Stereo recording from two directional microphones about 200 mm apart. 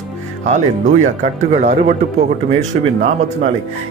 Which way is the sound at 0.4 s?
35° right (ahead or behind).